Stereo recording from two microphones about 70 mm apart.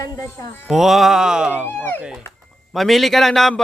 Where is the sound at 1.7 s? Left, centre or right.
Left.